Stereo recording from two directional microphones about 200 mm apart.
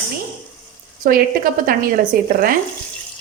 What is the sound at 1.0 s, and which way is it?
A woman's voice, 45° right (ahead or behind).